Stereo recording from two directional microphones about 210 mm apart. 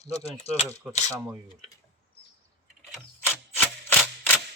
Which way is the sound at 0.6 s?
5° right (ahead or behind).